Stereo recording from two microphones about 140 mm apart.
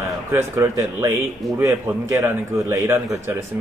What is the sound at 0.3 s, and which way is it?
A man's voice, 20° right (ahead or behind).